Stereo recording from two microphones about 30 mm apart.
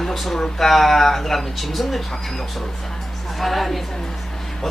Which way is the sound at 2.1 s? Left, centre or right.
Centre.